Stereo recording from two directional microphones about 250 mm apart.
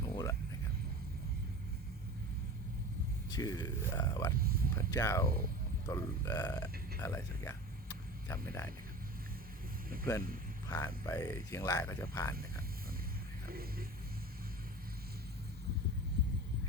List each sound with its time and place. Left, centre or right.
0.0 s vehicle: centre
3.2 s speech: centre
4.4 s a sound: right
4.9 s speech: centre
7.0 s vehicle: centre
10.7 s speech: centre
13.5 s music: right